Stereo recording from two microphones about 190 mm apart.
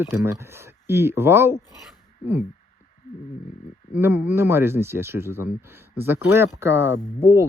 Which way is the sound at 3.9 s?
10° right (ahead or behind).